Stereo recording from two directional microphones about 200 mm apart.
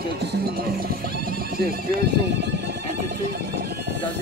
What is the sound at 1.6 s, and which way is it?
Speech, 50° right (ahead or behind).